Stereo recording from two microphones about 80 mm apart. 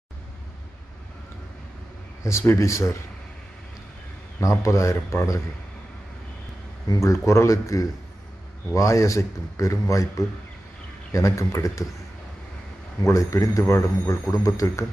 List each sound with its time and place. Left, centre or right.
2.2 s a man's voice: left
4.4 s a man's voice: left
7.0 s a man's voice: left
13.0 s a man's voice: left